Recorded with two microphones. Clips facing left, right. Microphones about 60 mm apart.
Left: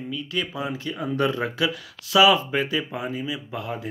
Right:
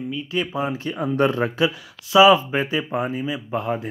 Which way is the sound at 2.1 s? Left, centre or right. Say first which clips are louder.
Right 4 dB; right.